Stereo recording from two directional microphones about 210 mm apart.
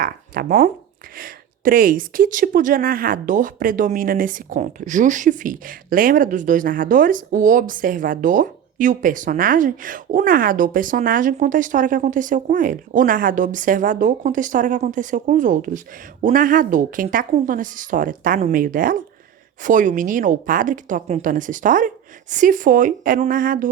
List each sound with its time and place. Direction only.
0.0 s speech: 45° right (ahead or behind)